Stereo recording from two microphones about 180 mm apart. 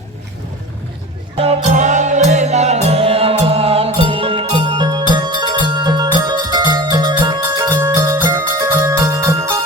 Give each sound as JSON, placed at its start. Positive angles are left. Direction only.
{"t": 1.4, "sound": "music", "side_deg": -40}